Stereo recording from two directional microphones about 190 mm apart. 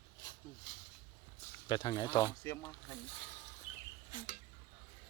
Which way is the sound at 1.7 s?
25° left (ahead or behind).